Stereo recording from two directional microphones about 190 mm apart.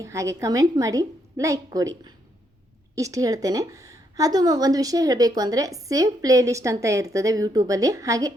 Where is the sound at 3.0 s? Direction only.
15° right (ahead or behind).